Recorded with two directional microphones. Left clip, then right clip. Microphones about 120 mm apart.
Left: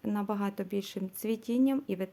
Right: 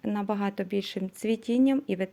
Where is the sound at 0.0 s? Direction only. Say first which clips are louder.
Right 4 dB; 20° right (ahead or behind).